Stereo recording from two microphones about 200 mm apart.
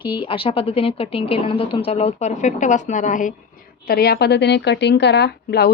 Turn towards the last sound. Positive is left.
turn(degrees=55)  # may be behind; listen again after turning